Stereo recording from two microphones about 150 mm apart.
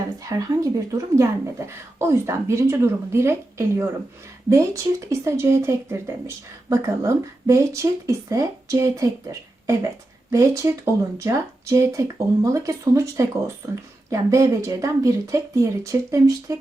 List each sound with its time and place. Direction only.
0.3 s speech: 20° right (ahead or behind)
10.3 s speech: 20° right (ahead or behind)